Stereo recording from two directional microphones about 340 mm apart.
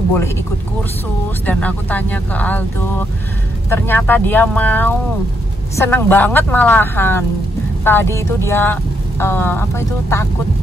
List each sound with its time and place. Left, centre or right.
1.4 s a woman's voice: centre
3.7 s a woman's voice: centre